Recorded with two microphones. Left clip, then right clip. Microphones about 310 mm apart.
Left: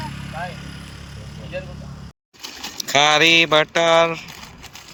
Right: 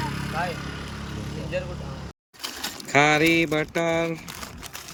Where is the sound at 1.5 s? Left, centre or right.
Centre.